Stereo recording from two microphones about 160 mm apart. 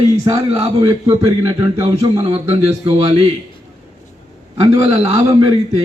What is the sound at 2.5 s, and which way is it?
Speech, 35° right (ahead or behind).